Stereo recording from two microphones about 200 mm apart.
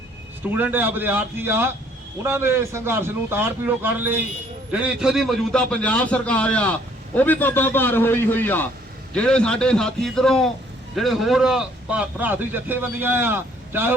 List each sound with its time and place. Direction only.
0.4 s a man's voice: 10° right (ahead or behind)